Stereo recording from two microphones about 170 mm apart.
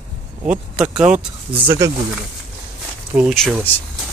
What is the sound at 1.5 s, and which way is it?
Speech, 30° right (ahead or behind).